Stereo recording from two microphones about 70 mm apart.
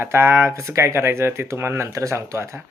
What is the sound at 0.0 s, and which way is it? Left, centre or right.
Speech, right.